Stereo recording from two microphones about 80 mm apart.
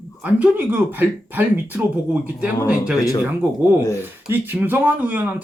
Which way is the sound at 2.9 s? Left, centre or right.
Left.